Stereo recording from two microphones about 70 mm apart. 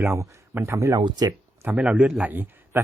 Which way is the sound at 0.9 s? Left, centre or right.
Right.